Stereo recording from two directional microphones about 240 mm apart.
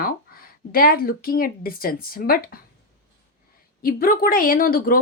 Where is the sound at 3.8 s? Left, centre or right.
Left.